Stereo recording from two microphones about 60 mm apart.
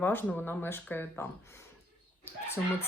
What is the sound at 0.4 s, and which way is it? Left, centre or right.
Speech, left.